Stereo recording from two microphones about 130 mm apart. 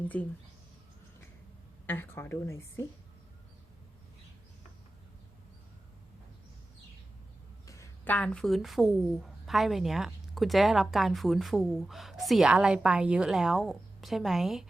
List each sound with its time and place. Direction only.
0.0 s a woman's voice: 10° left (ahead or behind)
1.9 s a woman's voice: 15° left (ahead or behind)
7.7 s a sound: 25° left (ahead or behind)
8.1 s speech: 10° left (ahead or behind)